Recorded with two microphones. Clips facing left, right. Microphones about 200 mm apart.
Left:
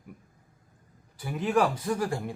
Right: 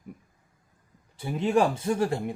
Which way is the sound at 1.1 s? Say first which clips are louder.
Right 2 dB; 25° right (ahead or behind).